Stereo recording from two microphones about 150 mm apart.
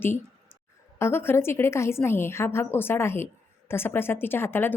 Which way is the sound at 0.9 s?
15° left (ahead or behind).